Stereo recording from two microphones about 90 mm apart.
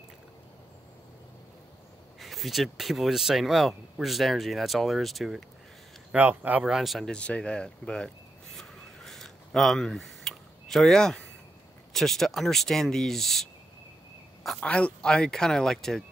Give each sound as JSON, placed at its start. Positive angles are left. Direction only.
{"t": 2.1, "sound": "speech", "side_deg": 0}
{"t": 6.1, "sound": "speech", "side_deg": -20}
{"t": 6.7, "sound": "speech", "side_deg": -5}
{"t": 7.1, "sound": "speech", "side_deg": 15}
{"t": 8.5, "sound": "a sound", "side_deg": 5}
{"t": 11.9, "sound": "speech", "side_deg": 5}
{"t": 14.6, "sound": "speech", "side_deg": 15}